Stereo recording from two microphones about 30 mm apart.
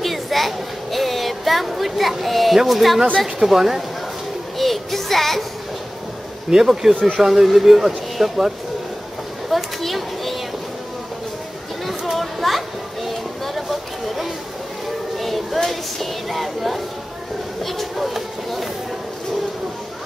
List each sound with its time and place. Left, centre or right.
0.0 s a sound: centre
3.3 s speech: centre
4.6 s music: centre
6.5 s speech: centre
7.4 s speech: centre
9.8 s children playing: centre
12.1 s children playing: centre
13.6 s a sound: centre
15.1 s child singing: centre
15.7 s a sound: centre
17.6 s speech: centre